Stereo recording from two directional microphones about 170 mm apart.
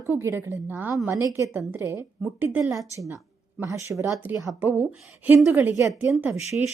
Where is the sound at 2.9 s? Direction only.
15° right (ahead or behind).